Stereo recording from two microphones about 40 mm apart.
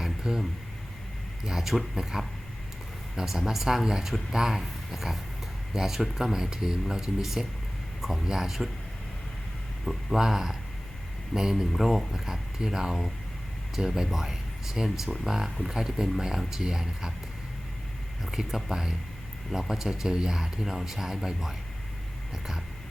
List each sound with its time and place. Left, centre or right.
0.0 s a sound: centre
1.5 s speech: centre
9.8 s speech: centre
10.2 s speech: centre
11.3 s speech: centre
11.7 s speech: centre
18.2 s speech: centre